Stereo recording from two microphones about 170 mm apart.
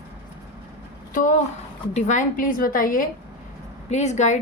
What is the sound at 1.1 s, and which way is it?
Speech, 50° left (ahead or behind).